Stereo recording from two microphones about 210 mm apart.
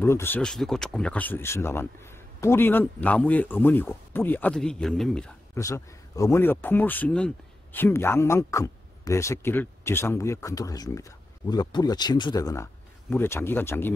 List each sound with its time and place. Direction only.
0.0 s speech: 10° left (ahead or behind)
5.6 s speech: 15° left (ahead or behind)